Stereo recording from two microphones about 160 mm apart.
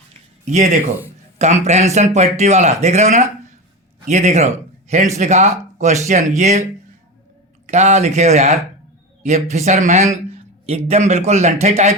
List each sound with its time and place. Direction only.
0.4 s a man's voice: 50° right (ahead or behind)
7.7 s a man's voice: 45° right (ahead or behind)